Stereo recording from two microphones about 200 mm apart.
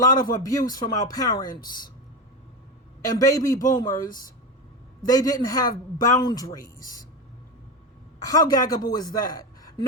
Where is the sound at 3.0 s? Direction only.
20° left (ahead or behind).